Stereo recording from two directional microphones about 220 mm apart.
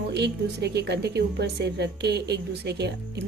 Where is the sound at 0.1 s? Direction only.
50° right (ahead or behind).